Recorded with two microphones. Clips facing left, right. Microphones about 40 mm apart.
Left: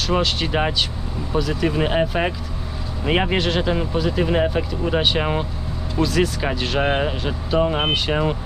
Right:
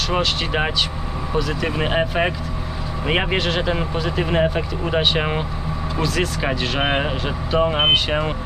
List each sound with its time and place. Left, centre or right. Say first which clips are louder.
0.2 s speech: even; centre